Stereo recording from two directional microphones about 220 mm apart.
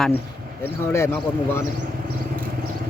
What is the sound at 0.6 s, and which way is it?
Speech, 10° left (ahead or behind).